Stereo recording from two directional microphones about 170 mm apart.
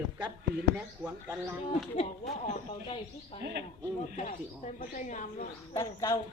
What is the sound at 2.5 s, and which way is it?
Speech, 35° left (ahead or behind).